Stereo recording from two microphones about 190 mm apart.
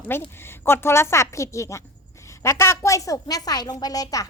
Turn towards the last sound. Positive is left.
turn(degrees=20)  # may be behind; listen again after turning